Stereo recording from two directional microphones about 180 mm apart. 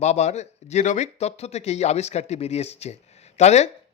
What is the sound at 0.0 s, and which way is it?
A man's voice, 40° left (ahead or behind).